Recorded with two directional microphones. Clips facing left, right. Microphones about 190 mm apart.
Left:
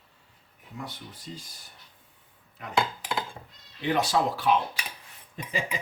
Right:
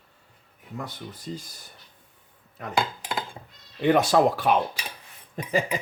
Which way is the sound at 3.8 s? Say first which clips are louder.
Right 6 dB; 50° right (ahead or behind).